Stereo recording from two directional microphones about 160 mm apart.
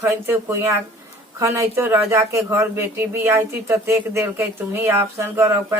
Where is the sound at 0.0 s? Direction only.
15° right (ahead or behind).